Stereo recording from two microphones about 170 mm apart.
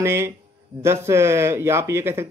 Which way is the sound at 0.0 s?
15° right (ahead or behind).